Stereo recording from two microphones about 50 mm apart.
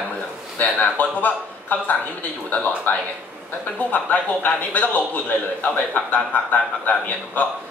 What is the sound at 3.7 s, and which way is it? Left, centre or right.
A man's voice, left.